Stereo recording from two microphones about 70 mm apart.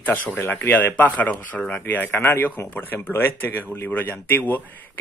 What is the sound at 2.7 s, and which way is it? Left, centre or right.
Speech, left.